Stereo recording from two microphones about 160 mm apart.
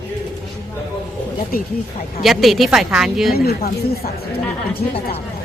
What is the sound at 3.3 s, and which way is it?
Speech, 75° left (ahead or behind).